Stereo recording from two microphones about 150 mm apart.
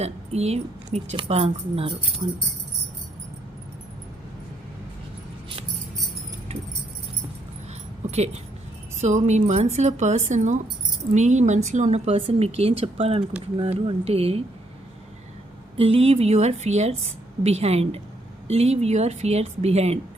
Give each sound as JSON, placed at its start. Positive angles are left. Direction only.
{"t": 0.0, "sound": "speech", "side_deg": -45}
{"t": 9.0, "sound": "speech", "side_deg": -50}
{"t": 15.8, "sound": "speech", "side_deg": -40}